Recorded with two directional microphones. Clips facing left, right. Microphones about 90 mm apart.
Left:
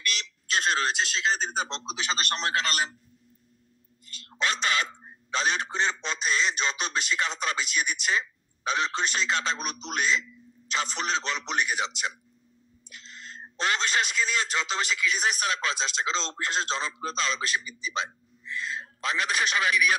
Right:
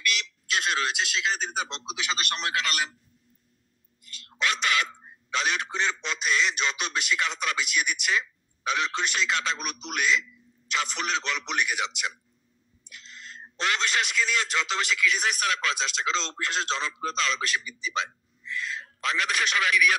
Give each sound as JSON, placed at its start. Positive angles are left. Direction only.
{"t": 0.0, "sound": "speech", "side_deg": 30}
{"t": 4.0, "sound": "a sound", "side_deg": 30}
{"t": 6.2, "sound": "a man's voice", "side_deg": 25}